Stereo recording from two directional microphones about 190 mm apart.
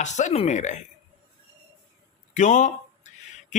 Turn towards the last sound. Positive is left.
turn(degrees=40)  # may be behind; listen again after turning